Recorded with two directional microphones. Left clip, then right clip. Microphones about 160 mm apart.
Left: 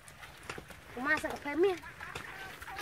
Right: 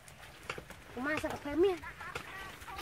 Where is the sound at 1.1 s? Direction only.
65° right (ahead or behind).